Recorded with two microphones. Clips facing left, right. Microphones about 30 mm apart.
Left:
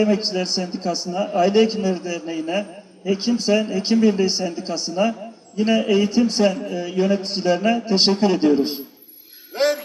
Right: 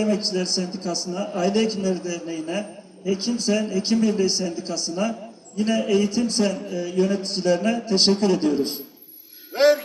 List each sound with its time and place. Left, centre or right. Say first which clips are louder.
0.0 s a man's voice: left 3 dB; centre
9.5 s music: right 3 dB; centre